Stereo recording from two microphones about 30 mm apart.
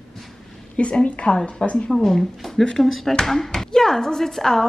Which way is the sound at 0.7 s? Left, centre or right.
Left.